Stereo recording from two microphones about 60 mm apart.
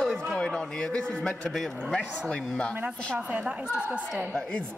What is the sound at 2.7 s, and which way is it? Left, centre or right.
A woman's voice, right.